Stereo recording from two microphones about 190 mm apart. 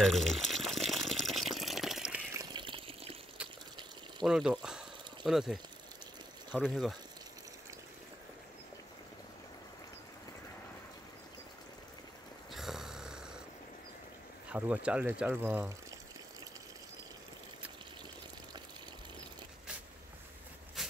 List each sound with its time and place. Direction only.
0.0 s water: centre (ahead or behind)
2.3 s water: 20° right (ahead or behind)
4.2 s speech: centre (ahead or behind)
12.5 s a sound: centre (ahead or behind)
14.5 s speech: 5° right (ahead or behind)